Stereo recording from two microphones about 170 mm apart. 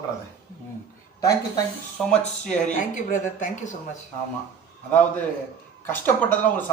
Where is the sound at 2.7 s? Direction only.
50° left (ahead or behind).